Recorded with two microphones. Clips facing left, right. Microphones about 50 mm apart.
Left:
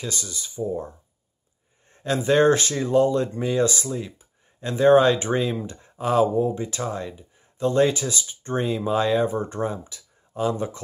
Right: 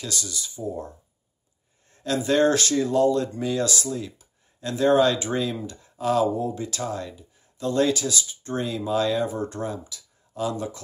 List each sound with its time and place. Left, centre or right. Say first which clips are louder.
0.0 s speech: left 1 dB; left